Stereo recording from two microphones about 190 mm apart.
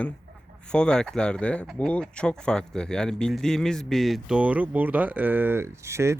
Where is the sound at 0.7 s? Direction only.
5° left (ahead or behind).